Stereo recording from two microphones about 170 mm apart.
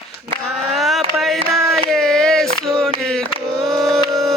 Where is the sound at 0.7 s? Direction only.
Centre (ahead or behind).